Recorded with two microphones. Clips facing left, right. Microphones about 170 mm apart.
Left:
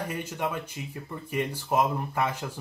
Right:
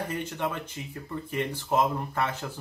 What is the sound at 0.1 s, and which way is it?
Speech, 10° left (ahead or behind).